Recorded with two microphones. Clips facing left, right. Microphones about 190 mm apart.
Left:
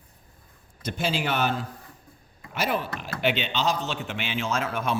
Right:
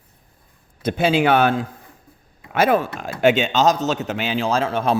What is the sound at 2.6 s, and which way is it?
Speech, 45° right (ahead or behind).